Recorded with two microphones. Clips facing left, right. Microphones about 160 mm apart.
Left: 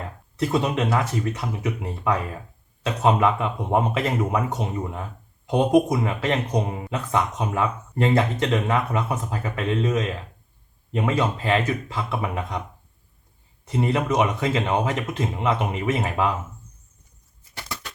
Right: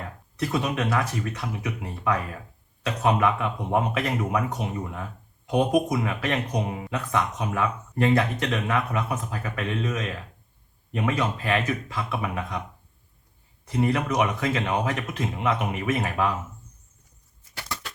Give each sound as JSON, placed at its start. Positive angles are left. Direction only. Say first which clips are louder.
{"t": 0.3, "sound": "speech", "louder": "left 4 dB", "side_deg": 25}
{"t": 13.7, "sound": "speech", "louder": "left 2 dB", "side_deg": 25}